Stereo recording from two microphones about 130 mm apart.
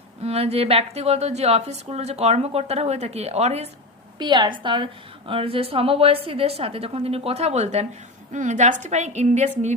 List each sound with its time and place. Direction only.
0.2 s a woman's voice: 50° right (ahead or behind)
4.2 s a woman's voice: 35° right (ahead or behind); by 9.5 s 60° right (ahead or behind)